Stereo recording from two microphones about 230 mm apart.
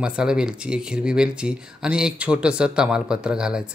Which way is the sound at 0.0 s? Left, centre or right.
Centre.